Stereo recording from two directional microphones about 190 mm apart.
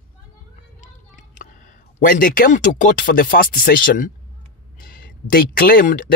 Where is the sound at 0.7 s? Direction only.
35° left (ahead or behind).